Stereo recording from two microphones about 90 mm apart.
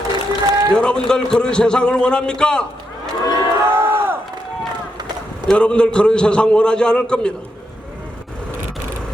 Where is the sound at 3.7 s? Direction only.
25° right (ahead or behind).